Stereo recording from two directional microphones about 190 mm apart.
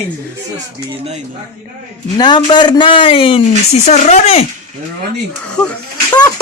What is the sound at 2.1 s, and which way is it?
Speech, 20° left (ahead or behind).